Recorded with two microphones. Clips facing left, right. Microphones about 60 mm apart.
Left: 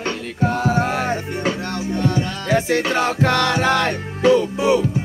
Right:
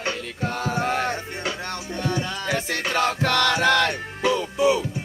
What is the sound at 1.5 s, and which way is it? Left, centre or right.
Music, left.